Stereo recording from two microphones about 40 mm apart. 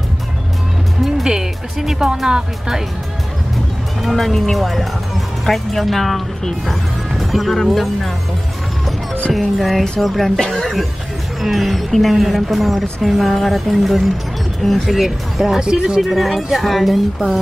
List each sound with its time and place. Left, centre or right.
1.0 s music: centre
2.2 s speech: centre
4.0 s speech: centre
9.6 s speech: centre
15.6 s speech: centre
16.0 s speech: centre